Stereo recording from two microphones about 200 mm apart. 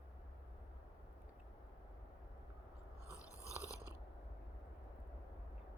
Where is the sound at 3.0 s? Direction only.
15° left (ahead or behind).